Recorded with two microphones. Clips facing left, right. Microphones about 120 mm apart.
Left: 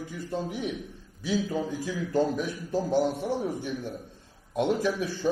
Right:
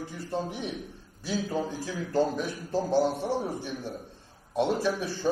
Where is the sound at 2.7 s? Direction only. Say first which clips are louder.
Even; 30° right (ahead or behind).